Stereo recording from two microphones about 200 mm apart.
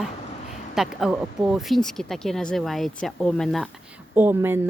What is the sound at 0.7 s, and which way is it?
Speech, centre (ahead or behind).